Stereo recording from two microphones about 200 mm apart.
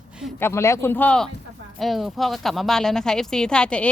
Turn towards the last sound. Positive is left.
turn(degrees=5)  # may be behind; listen again after turning